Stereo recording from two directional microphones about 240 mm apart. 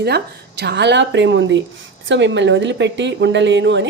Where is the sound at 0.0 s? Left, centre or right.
Right.